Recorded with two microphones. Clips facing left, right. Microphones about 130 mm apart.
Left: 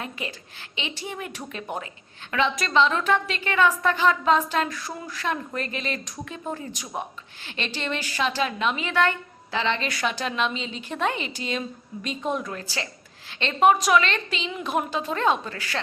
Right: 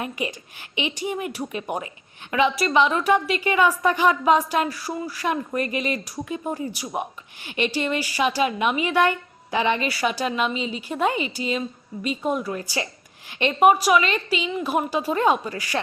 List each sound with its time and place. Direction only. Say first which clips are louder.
0.0 s a woman's voice: right 5 dB; 15° right (ahead or behind)